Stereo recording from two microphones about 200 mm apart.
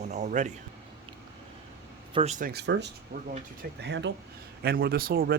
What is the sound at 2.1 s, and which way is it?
Speech, 35° right (ahead or behind).